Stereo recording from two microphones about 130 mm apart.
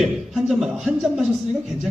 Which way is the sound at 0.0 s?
Centre (ahead or behind).